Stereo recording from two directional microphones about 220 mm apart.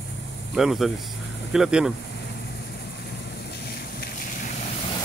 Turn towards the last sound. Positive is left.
turn(degrees=35)  # may be behind; listen again after turning